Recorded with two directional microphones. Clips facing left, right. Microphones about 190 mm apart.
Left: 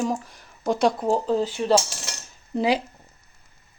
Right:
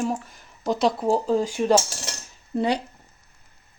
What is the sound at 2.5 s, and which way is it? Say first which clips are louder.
Speech: left 1 dB; 5° left (ahead or behind).